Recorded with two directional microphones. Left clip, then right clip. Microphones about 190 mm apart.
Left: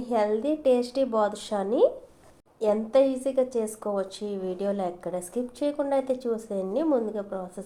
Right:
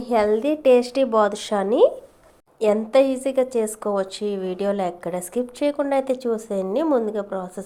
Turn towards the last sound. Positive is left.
turn(degrees=-30)  # may be behind; listen again after turning